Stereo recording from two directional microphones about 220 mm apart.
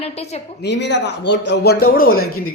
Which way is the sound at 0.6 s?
50° left (ahead or behind).